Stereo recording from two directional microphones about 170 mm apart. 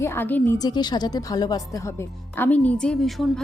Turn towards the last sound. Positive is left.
turn(degrees=0)  # may be behind; listen again after turning